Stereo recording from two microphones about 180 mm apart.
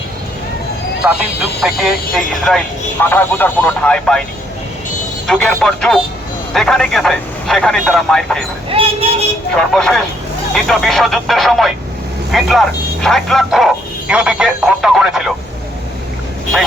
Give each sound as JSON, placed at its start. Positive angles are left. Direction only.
{"t": 1.0, "sound": "speech", "side_deg": -5}
{"t": 5.2, "sound": "speech", "side_deg": 5}
{"t": 8.7, "sound": "speech", "side_deg": -30}
{"t": 9.6, "sound": "speech", "side_deg": 5}